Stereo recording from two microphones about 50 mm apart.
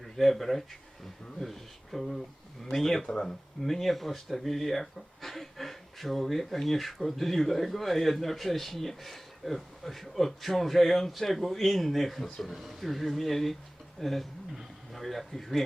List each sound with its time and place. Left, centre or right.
0.0 s speech: centre
3.1 s speech: centre
3.6 s speech: centre
14.0 s a sound: centre
15.0 s speech: centre